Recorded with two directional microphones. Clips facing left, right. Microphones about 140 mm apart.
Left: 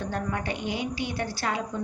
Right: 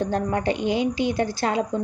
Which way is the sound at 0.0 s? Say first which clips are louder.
Right 7 dB; 30° right (ahead or behind).